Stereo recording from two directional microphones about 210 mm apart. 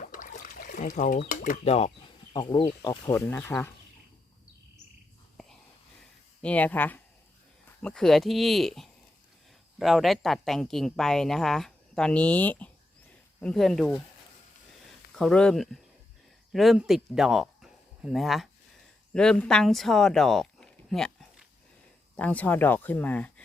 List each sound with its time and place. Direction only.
0.0 s a sound: 40° left (ahead or behind)
2.3 s speech: 20° left (ahead or behind)
6.4 s speech: 5° left (ahead or behind)
15.1 s speech: 5° left (ahead or behind)